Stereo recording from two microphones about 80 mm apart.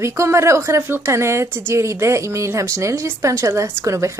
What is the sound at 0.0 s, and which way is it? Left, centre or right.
A woman's voice, right.